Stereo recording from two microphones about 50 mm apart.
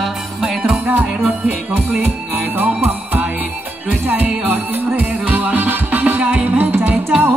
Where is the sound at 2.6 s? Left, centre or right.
Right.